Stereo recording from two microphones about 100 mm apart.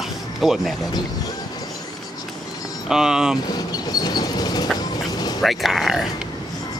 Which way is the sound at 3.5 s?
40° left (ahead or behind).